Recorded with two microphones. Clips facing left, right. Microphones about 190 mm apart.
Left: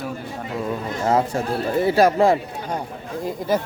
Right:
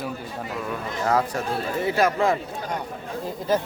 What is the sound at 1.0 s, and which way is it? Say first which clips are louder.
Speech: left 3 dB; 25° left (ahead or behind).